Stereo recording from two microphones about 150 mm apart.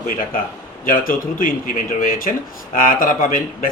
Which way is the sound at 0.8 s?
65° left (ahead or behind).